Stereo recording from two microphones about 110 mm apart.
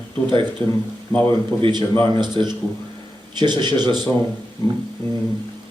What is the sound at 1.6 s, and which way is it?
Speech, 40° right (ahead or behind).